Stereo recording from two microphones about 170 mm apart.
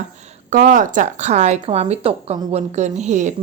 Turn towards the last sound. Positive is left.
turn(degrees=-45)  # may be behind; listen again after turning